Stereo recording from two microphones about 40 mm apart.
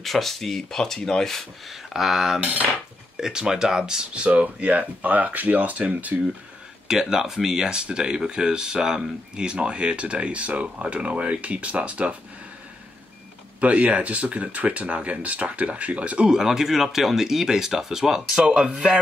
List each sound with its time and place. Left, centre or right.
0.0 s speech: centre
1.7 s speech: centre
4.1 s speech: right
6.9 s speech: centre; by 12.2 s right
13.6 s speech: right
16.3 s speech: centre
18.3 s speech: right